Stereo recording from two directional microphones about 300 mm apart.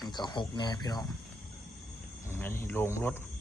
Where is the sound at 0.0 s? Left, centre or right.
Centre.